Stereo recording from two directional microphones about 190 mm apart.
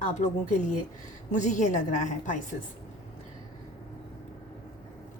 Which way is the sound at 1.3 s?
40° left (ahead or behind).